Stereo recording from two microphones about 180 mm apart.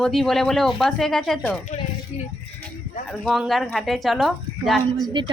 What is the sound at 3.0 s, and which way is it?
Speech, centre (ahead or behind).